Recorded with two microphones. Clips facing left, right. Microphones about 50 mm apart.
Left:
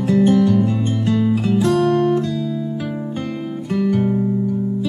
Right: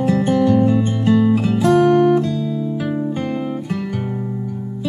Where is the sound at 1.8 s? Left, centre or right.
Right.